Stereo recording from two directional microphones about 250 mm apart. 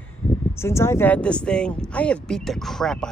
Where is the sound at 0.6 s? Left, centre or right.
Centre.